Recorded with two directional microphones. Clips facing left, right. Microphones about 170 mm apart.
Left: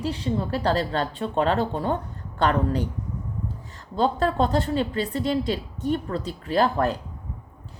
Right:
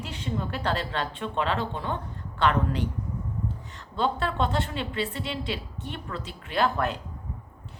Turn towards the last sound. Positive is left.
turn(degrees=35)  # may be behind; listen again after turning